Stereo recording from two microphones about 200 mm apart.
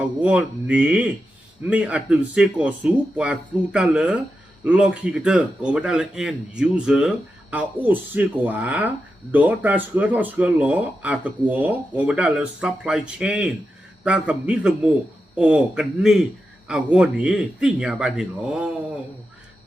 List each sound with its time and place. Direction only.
0.0 s speech: 5° right (ahead or behind)